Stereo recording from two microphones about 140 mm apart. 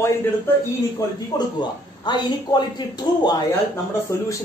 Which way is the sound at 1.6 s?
30° left (ahead or behind).